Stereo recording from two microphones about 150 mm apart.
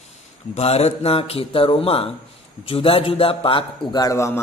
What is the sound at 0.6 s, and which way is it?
A man's voice, 45° left (ahead or behind).